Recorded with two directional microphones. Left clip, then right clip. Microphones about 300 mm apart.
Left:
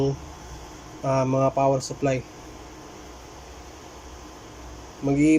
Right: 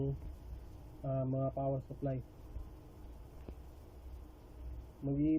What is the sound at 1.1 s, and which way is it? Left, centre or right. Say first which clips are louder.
Speech: left 16 dB; left.